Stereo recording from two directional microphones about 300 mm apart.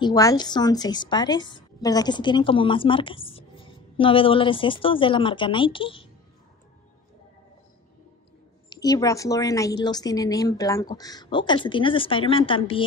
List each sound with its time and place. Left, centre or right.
0.0 s a woman's voice: centre
8.6 s a woman's voice: centre